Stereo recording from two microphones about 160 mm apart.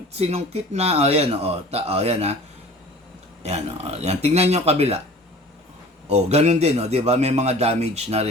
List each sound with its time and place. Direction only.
0.2 s a man's voice: 40° right (ahead or behind)
3.4 s a man's voice: 40° right (ahead or behind)
6.1 s a man's voice: 40° right (ahead or behind)